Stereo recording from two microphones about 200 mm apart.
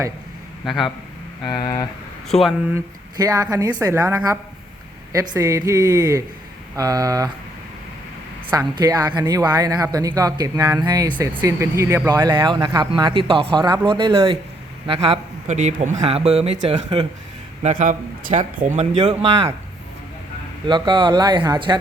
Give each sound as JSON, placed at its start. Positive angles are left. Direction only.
{"t": 0.6, "sound": "a man's voice", "side_deg": 0}
{"t": 2.3, "sound": "speech", "side_deg": 0}
{"t": 2.7, "sound": "speech", "side_deg": -20}
{"t": 8.4, "sound": "speech", "side_deg": -20}
{"t": 17.6, "sound": "speech", "side_deg": -35}
{"t": 20.7, "sound": "speech", "side_deg": -20}